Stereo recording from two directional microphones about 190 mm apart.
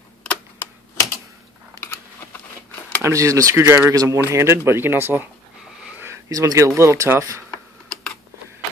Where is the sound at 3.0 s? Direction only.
15° right (ahead or behind).